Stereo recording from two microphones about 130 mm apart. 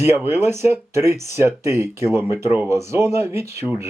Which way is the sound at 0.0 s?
20° right (ahead or behind).